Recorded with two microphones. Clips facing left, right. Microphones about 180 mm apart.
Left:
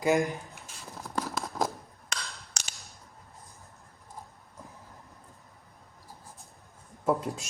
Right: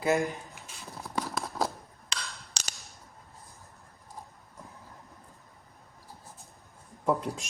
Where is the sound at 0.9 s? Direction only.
Centre (ahead or behind).